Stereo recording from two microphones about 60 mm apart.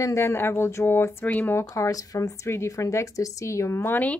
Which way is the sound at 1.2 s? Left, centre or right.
Left.